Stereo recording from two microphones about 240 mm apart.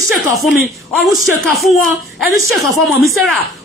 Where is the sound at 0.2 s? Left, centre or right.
Centre.